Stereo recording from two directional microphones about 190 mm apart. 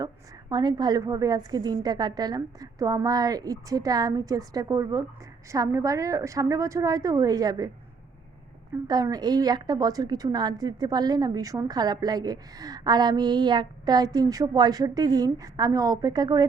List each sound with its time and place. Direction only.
0.5 s a woman's voice: 20° right (ahead or behind)
8.9 s a woman's voice: 20° right (ahead or behind)